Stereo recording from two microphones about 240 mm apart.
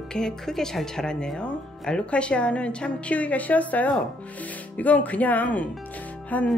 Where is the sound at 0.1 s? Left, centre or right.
Centre.